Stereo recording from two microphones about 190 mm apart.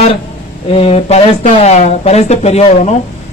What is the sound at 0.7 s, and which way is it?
Speech, 30° left (ahead or behind).